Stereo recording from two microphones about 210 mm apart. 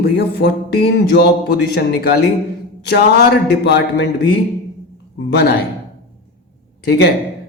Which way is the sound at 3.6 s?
55° left (ahead or behind).